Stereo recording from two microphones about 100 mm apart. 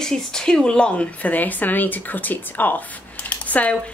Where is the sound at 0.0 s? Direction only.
5° left (ahead or behind).